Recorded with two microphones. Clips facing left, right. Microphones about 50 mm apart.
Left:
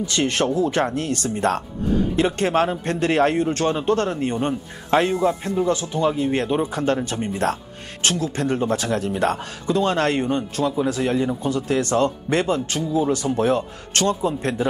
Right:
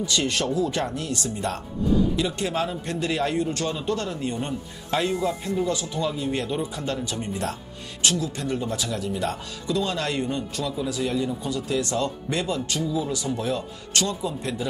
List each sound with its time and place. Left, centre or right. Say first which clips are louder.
0.0 s speech: left 4 dB; left